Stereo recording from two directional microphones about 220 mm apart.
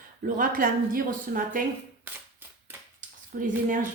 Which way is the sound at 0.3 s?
40° right (ahead or behind).